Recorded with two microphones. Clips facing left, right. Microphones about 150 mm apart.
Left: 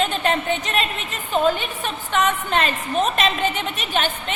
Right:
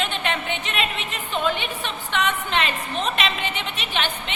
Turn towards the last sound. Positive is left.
turn(degrees=45)  # may be behind; listen again after turning